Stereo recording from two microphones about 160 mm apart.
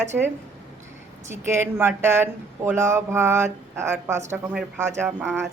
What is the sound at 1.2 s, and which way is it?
Speech, 15° right (ahead or behind).